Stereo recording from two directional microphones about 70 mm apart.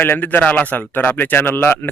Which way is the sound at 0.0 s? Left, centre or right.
Left.